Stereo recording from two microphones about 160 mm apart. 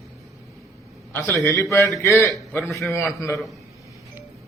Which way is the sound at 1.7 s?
20° left (ahead or behind).